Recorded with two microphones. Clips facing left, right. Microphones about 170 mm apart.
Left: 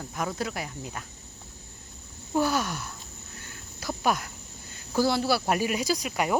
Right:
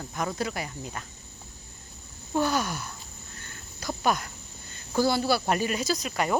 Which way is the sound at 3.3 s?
5° left (ahead or behind).